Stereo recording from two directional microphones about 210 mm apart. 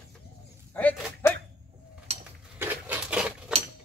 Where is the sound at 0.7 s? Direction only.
10° left (ahead or behind).